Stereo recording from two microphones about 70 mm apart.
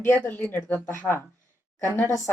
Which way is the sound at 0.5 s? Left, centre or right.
Left.